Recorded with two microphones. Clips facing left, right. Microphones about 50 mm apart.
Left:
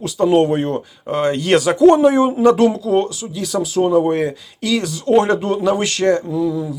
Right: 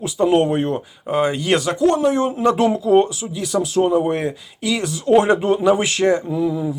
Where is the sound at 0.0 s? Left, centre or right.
Centre.